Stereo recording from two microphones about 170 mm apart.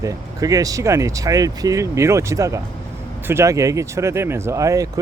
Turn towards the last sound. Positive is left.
turn(degrees=-20)  # may be behind; listen again after turning